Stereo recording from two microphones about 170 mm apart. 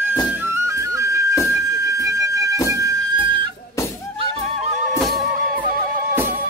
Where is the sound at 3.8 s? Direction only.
15° left (ahead or behind).